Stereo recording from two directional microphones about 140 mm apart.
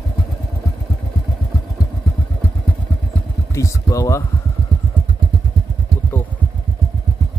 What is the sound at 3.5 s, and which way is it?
Speech, 25° left (ahead or behind).